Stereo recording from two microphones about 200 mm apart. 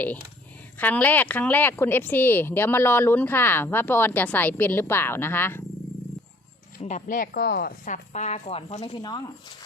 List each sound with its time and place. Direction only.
0.8 s speech: 10° left (ahead or behind)
6.7 s speech: 40° left (ahead or behind); by 9.2 s 20° left (ahead or behind)